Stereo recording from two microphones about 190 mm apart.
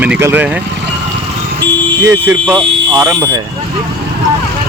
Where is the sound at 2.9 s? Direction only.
20° right (ahead or behind).